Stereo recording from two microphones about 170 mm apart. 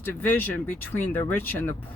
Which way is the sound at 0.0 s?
10° left (ahead or behind).